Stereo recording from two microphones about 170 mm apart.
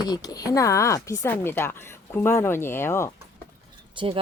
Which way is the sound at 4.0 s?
30° right (ahead or behind).